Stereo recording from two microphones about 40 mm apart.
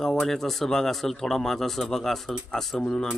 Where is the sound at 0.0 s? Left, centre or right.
Centre.